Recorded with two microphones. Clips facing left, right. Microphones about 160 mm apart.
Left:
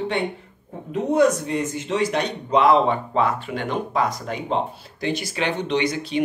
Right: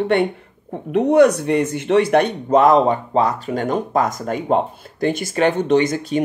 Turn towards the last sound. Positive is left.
turn(degrees=-45)  # may be behind; listen again after turning